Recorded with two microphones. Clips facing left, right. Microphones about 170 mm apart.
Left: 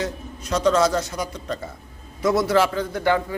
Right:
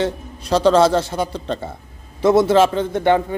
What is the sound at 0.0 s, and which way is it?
A man's voice, 30° right (ahead or behind).